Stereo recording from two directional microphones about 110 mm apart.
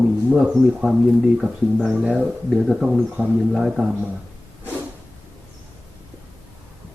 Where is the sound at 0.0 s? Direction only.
5° right (ahead or behind).